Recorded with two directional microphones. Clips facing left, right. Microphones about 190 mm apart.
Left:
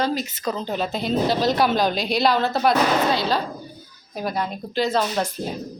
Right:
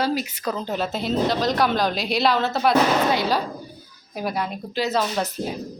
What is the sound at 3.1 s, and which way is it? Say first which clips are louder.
A woman's voice: even; 15° right (ahead or behind).